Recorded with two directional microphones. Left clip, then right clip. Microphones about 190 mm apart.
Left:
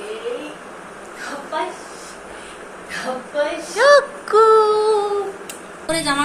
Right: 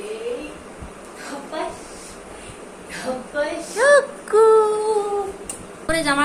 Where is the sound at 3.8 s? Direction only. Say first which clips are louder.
Left 2 dB; 10° right (ahead or behind).